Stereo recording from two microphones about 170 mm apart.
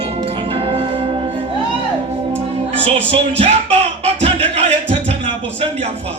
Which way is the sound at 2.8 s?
35° right (ahead or behind).